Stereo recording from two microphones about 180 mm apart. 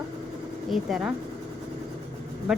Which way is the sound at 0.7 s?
Centre (ahead or behind).